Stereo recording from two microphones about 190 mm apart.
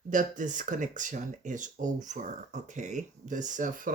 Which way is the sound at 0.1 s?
45° right (ahead or behind).